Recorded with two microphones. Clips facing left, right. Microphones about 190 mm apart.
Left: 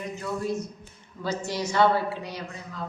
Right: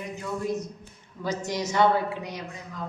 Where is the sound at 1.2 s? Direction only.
15° right (ahead or behind).